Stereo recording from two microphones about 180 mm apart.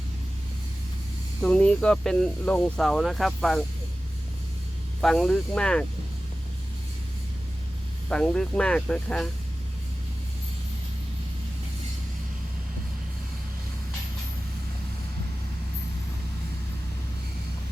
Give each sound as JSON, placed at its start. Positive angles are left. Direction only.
{"t": 1.4, "sound": "speech", "side_deg": 5}
{"t": 4.9, "sound": "speech", "side_deg": 5}
{"t": 8.1, "sound": "speech", "side_deg": 5}